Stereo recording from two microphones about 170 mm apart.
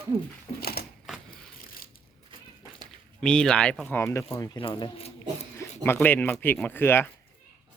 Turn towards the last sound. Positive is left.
turn(degrees=15)  # may be behind; listen again after turning